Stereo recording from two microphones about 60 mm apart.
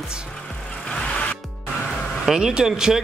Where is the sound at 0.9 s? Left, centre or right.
Centre.